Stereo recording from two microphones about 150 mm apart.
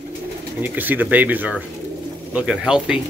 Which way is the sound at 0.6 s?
10° right (ahead or behind).